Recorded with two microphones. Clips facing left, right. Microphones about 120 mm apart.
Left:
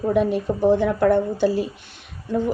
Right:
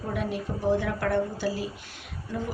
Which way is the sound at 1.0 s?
20° left (ahead or behind).